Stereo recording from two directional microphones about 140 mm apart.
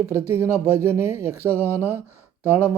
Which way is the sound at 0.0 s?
20° right (ahead or behind).